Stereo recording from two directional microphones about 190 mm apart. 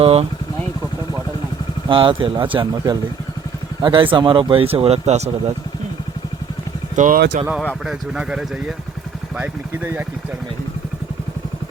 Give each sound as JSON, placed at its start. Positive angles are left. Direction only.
{"t": 0.0, "sound": "speech", "side_deg": -30}
{"t": 1.9, "sound": "speech", "side_deg": -25}
{"t": 6.9, "sound": "speech", "side_deg": -40}
{"t": 7.9, "sound": "speech", "side_deg": -5}